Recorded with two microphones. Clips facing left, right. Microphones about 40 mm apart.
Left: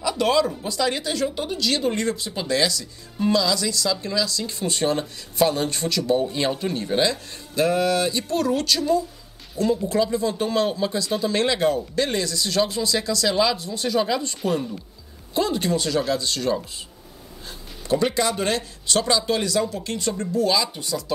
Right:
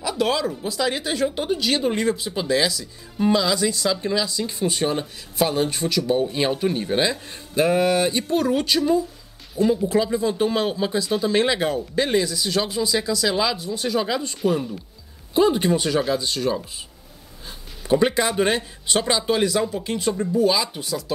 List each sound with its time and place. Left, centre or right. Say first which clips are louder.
0.1 s speech: left 2 dB; centre; by 4.5 s right
4.5 s speech: even; centre
15.3 s speech: right 4 dB; centre
17.5 s speech: right 3 dB; centre